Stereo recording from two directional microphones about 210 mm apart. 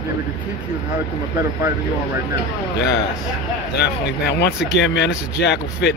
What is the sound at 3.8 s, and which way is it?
Speech, 50° left (ahead or behind).